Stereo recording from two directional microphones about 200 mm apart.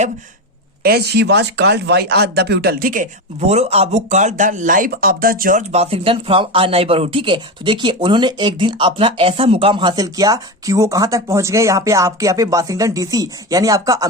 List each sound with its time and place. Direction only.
0.8 s speech: 50° right (ahead or behind); by 14.1 s 15° right (ahead or behind)